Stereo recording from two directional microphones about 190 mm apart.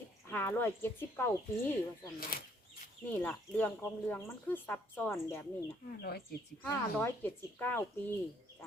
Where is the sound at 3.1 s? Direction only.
10° left (ahead or behind).